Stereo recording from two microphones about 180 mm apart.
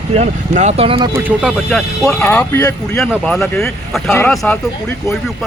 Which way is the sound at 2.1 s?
10° left (ahead or behind).